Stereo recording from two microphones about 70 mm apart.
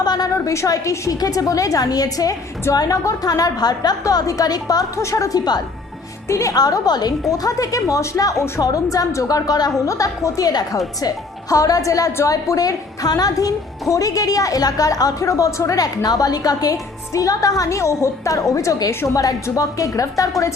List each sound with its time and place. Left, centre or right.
0.0 s a woman's voice: left
0.3 s a woman's voice: left
4.9 s a woman's voice: left
6.2 s a woman's voice: left
6.6 s a woman's voice: left
10.5 s a woman's voice: left
11.0 s a woman's voice: left